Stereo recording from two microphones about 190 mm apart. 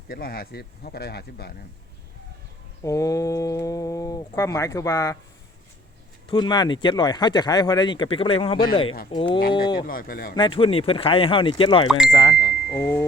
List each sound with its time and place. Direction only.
0.1 s speech: 50° left (ahead or behind)
2.8 s speech: 15° left (ahead or behind)
6.2 s speech: 25° left (ahead or behind)
9.8 s speech: 50° left (ahead or behind)
10.3 s speech: 25° left (ahead or behind)